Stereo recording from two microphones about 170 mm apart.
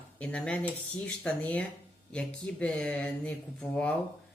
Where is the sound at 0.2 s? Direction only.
5° left (ahead or behind).